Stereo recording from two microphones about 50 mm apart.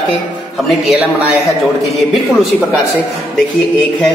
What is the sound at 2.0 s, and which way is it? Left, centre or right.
Speech, centre.